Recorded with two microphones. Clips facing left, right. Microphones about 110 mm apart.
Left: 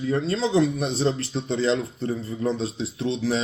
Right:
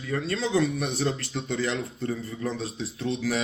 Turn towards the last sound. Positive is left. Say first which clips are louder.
# left 3 dB
turn(degrees=25)  # may be behind; listen again after turning